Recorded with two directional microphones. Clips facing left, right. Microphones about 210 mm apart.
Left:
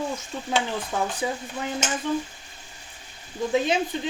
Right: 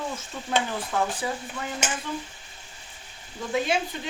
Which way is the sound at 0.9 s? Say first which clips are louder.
Right 1 dB; 20° left (ahead or behind).